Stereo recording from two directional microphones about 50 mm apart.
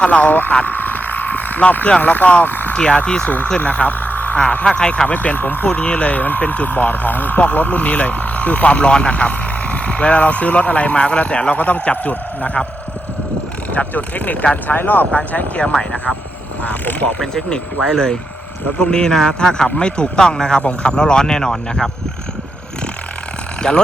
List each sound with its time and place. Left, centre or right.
0.0 s speech: left
0.6 s a sound: left
2.0 s speech: left
2.7 s speech: left
4.4 s speech: left
5.0 s speech: left
5.6 s speech: left
13.7 s speech: left
17.2 s speech: centre
23.6 s speech: centre